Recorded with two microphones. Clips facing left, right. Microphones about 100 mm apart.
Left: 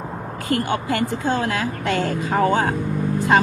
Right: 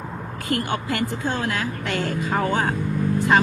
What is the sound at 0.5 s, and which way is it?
Speech, 35° left (ahead or behind).